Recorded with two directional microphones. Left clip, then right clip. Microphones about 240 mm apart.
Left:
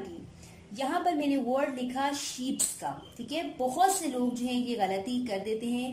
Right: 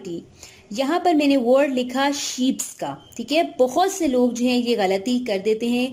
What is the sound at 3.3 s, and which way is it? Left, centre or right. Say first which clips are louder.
A woman's voice: right 13 dB; right.